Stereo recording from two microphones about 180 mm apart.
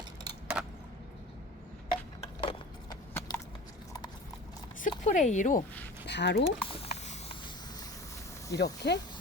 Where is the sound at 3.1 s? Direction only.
10° left (ahead or behind).